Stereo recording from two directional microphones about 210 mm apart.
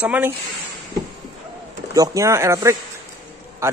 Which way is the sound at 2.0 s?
15° right (ahead or behind).